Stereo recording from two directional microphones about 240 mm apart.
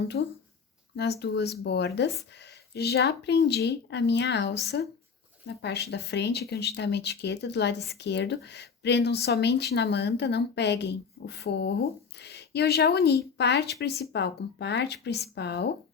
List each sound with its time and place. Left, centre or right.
0.2 s speech: left